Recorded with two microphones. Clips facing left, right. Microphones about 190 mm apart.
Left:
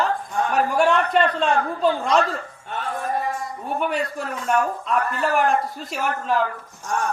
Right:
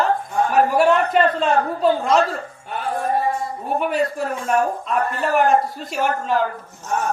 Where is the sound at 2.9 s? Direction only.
30° right (ahead or behind).